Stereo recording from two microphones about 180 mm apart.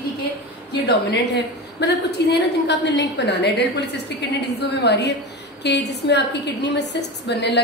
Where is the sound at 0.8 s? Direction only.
70° left (ahead or behind).